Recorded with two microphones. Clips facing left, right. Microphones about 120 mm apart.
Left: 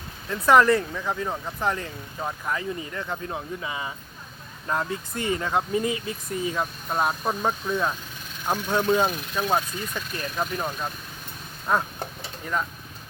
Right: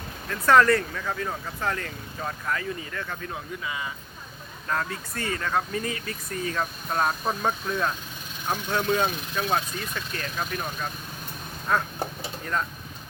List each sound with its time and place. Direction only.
0.3 s speech: 15° left (ahead or behind)